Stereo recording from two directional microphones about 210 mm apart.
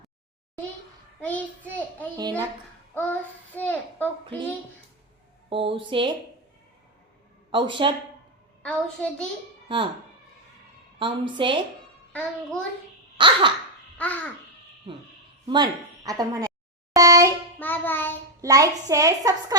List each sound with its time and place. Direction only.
1.2 s child singing: 5° left (ahead or behind)
2.9 s a child's voice: 10° left (ahead or behind)
5.5 s a woman's voice: 25° right (ahead or behind)
7.5 s a woman's voice: 25° right (ahead or behind)
8.6 s a child's voice: 5° left (ahead or behind)
9.6 s speech: 25° right (ahead or behind)
11.0 s a woman's voice: 25° right (ahead or behind)
12.1 s a child's voice: 5° left (ahead or behind)
13.1 s a sound: 20° right (ahead or behind)
14.0 s babbling: 5° left (ahead or behind)
15.4 s speech: 20° right (ahead or behind)
16.9 s a sound: 15° right (ahead or behind)
17.6 s music: 10° left (ahead or behind)
18.4 s a woman's voice: 15° right (ahead or behind)